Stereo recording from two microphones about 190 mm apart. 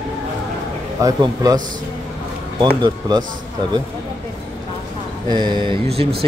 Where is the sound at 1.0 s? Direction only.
20° right (ahead or behind).